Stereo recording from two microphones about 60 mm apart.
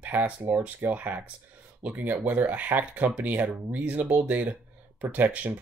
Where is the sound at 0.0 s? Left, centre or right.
Right.